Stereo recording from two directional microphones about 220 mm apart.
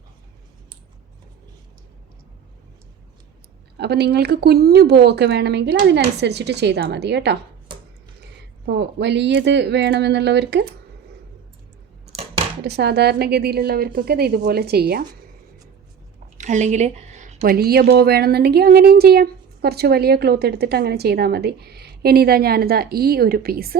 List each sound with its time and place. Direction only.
3.8 s a woman's voice: 50° right (ahead or behind)
12.6 s a woman's voice: 50° right (ahead or behind)
16.4 s a woman's voice: 30° right (ahead or behind)